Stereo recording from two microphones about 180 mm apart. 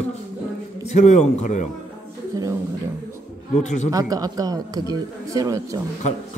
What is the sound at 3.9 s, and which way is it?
A man's voice, 20° right (ahead or behind).